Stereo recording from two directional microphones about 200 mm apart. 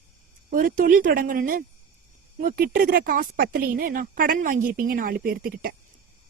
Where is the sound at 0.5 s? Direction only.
40° right (ahead or behind).